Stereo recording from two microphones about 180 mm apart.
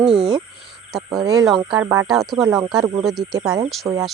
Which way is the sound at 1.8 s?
15° right (ahead or behind).